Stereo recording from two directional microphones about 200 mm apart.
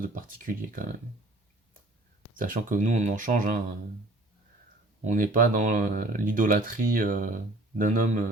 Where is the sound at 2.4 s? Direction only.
40° right (ahead or behind).